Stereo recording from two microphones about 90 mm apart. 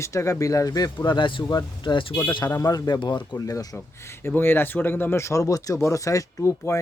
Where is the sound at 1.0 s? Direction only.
65° left (ahead or behind).